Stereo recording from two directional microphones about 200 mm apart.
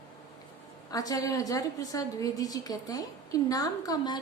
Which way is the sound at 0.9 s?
20° left (ahead or behind).